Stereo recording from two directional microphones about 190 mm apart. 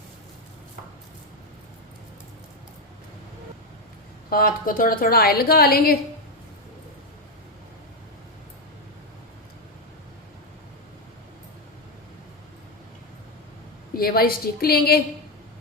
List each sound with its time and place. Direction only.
4.3 s a woman's voice: 50° left (ahead or behind)
13.9 s a woman's voice: 50° left (ahead or behind)